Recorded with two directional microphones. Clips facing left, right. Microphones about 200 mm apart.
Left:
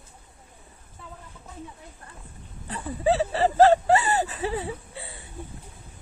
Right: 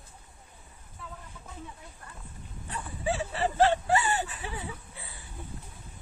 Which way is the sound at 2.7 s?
35° left (ahead or behind).